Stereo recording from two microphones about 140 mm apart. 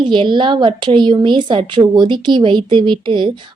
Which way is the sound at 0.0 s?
35° right (ahead or behind).